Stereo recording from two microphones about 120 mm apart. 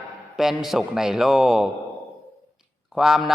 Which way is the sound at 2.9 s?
Centre (ahead or behind).